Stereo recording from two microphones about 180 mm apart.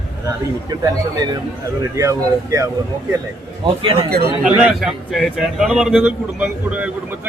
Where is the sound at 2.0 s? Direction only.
15° right (ahead or behind).